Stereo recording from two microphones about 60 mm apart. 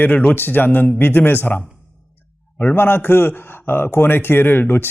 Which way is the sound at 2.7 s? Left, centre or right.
Left.